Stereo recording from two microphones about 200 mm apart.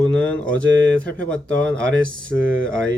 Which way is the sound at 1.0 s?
70° right (ahead or behind).